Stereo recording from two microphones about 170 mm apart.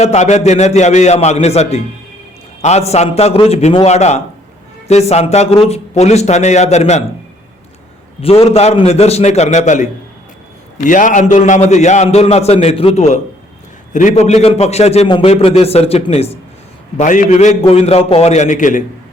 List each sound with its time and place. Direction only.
0.0 s a man's voice: 40° left (ahead or behind)
8.2 s a man's voice: 35° left (ahead or behind)